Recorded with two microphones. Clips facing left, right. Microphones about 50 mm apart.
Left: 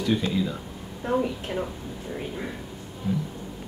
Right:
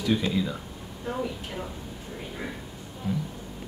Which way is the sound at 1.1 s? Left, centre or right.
Centre.